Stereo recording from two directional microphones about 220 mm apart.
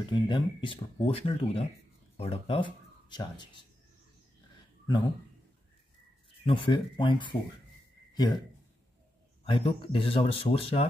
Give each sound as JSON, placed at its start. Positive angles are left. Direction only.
{"t": 0.1, "sound": "speech", "side_deg": 20}
{"t": 6.4, "sound": "speech", "side_deg": 25}
{"t": 8.1, "sound": "a sound", "side_deg": 20}
{"t": 9.4, "sound": "speech", "side_deg": 25}